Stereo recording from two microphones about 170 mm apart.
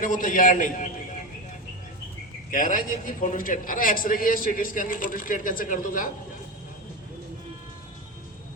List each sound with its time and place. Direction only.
0.0 s a man's voice: 50° left (ahead or behind)
2.5 s a man's voice: 55° left (ahead or behind)